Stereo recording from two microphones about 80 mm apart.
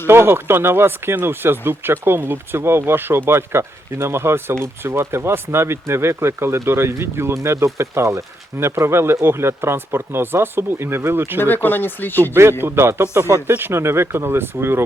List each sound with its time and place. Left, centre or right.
0.1 s speech: right
11.3 s speech: left
12.3 s speech: right